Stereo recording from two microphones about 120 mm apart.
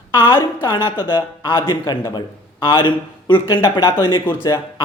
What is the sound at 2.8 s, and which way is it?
A man's voice, 40° left (ahead or behind).